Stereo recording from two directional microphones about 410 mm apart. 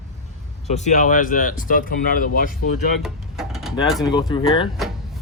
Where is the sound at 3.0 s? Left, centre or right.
Centre.